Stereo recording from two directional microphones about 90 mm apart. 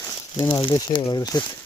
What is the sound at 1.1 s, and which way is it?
Speech, 45° left (ahead or behind).